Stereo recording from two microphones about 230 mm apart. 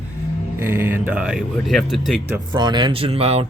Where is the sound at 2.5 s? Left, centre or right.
Centre.